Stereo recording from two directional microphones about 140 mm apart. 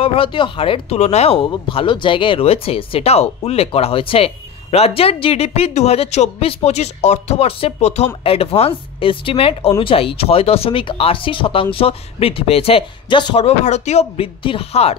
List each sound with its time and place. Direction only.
0.0 s speech: 40° left (ahead or behind)
13.4 s speech: 50° left (ahead or behind)